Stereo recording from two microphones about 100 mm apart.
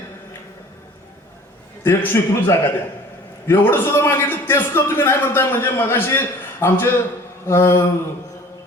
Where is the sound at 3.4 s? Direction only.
25° left (ahead or behind).